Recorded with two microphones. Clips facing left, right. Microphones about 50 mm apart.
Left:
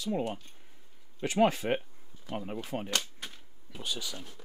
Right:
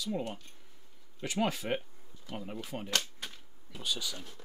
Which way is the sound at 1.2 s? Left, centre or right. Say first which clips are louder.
Left 6 dB; left.